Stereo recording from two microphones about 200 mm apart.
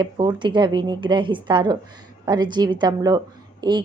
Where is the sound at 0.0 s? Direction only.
20° right (ahead or behind).